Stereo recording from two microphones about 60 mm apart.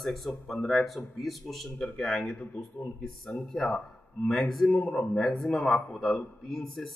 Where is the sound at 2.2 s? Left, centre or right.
Left.